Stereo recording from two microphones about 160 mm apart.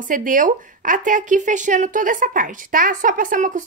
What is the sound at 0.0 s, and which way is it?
A woman's voice, 55° right (ahead or behind).